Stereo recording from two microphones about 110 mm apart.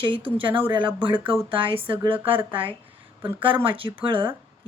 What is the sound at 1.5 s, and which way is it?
Speech, 55° right (ahead or behind).